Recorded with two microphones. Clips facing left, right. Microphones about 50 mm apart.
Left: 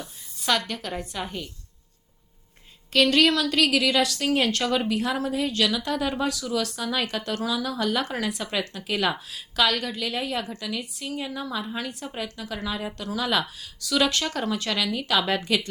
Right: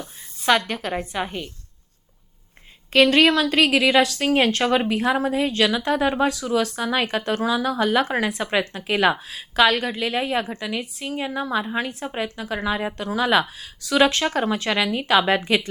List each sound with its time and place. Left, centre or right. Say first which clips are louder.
0.0 s a sound: right 6 dB; right
0.7 s a woman's voice: right 5 dB; right
2.9 s a woman's voice: right 4 dB; right